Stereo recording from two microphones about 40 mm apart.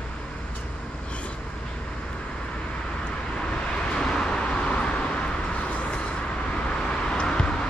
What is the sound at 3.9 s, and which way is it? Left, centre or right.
Vehicle, centre.